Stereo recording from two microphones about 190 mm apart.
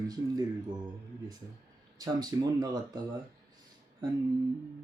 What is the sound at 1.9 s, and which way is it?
Speech, 20° right (ahead or behind).